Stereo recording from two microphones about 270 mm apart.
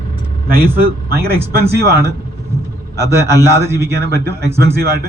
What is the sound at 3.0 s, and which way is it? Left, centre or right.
Speech, centre.